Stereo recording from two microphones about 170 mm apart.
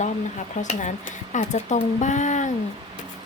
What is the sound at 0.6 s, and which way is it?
Speech, 45° left (ahead or behind).